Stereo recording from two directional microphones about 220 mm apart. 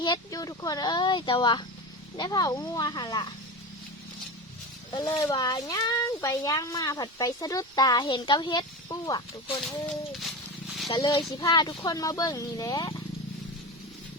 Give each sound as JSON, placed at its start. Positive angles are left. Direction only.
{"t": 0.0, "sound": "a woman's voice", "side_deg": 20}
{"t": 4.9, "sound": "speech", "side_deg": 15}
{"t": 10.1, "sound": "a sound", "side_deg": 0}
{"t": 10.8, "sound": "a woman's voice", "side_deg": 20}